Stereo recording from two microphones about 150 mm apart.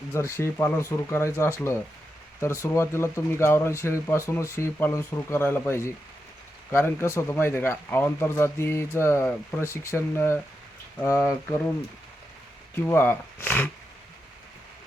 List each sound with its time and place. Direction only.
0.1 s speech: 20° left (ahead or behind)
12.7 s speech: 15° left (ahead or behind)